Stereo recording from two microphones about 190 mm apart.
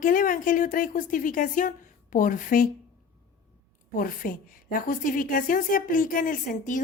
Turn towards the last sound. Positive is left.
turn(degrees=45)  # may be behind; listen again after turning